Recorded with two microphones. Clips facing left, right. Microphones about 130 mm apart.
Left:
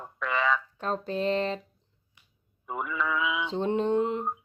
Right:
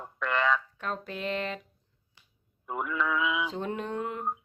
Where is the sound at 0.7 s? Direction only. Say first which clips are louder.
Left 6 dB; 30° left (ahead or behind).